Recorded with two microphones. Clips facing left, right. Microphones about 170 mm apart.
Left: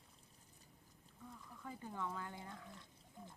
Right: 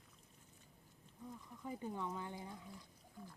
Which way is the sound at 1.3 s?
20° right (ahead or behind).